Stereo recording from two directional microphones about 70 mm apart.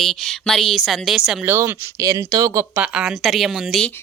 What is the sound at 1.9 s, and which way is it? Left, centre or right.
Speech, right.